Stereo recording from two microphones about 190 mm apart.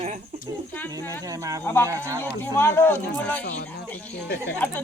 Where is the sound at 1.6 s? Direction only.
10° left (ahead or behind).